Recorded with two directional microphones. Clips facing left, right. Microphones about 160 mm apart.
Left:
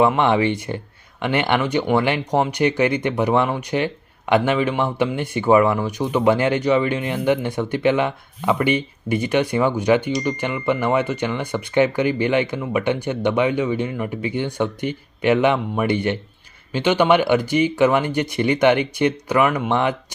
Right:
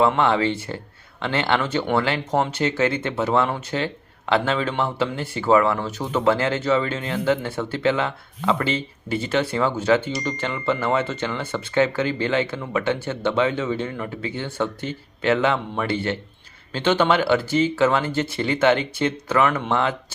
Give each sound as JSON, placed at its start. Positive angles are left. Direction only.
{"t": 0.0, "sound": "speech", "side_deg": 15}